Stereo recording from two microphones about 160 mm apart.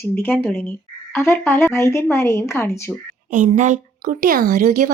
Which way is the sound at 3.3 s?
50° right (ahead or behind).